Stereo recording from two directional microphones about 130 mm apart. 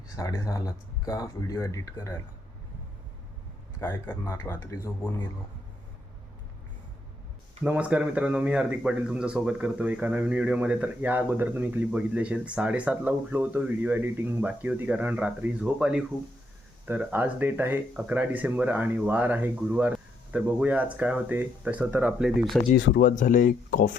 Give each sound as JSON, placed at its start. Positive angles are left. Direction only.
{"t": 0.2, "sound": "speech", "side_deg": 25}
{"t": 3.8, "sound": "speech", "side_deg": 15}
{"t": 7.6, "sound": "speech", "side_deg": -10}
{"t": 22.5, "sound": "speech", "side_deg": 0}
{"t": 23.0, "sound": "speech", "side_deg": 85}